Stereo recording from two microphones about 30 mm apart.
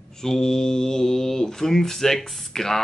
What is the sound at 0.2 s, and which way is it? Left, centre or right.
Mantra, centre.